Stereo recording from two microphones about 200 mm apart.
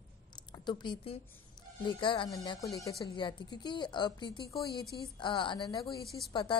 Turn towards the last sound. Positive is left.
turn(degrees=25)  # may be behind; listen again after turning